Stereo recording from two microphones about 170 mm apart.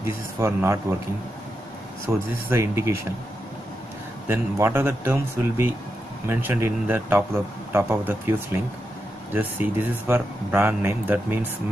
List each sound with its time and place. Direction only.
0.0 s a man's voice: 15° right (ahead or behind)
2.1 s a man's voice: 10° right (ahead or behind)
4.3 s a man's voice: 15° right (ahead or behind)